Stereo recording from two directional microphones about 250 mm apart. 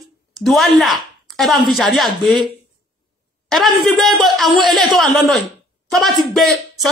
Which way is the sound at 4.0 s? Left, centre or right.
Centre.